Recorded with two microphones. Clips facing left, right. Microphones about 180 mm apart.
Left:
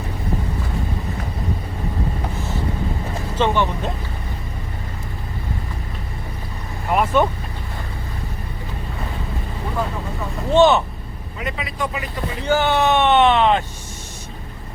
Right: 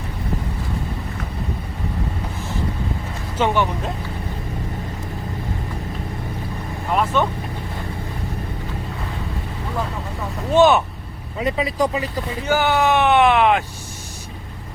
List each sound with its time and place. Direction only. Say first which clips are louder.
3.3 s speech: even; 10° right (ahead or behind)
6.9 s vehicle: left 2 dB; 10° left (ahead or behind)
10.5 s speech: even; 10° right (ahead or behind)
11.3 s speech: right 7 dB; 35° right (ahead or behind)
12.5 s speech: left 1 dB; 10° right (ahead or behind)